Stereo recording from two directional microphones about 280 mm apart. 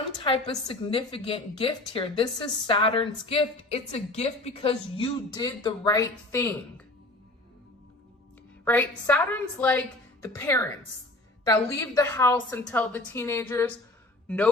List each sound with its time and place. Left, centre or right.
0.2 s a woman's voice: centre
8.6 s a woman's voice: centre